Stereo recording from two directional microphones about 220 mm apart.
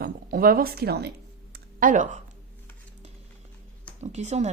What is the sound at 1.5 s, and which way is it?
Computer keyboard, 40° right (ahead or behind).